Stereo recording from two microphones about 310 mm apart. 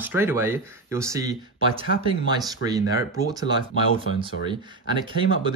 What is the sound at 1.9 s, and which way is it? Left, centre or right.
Speech, left.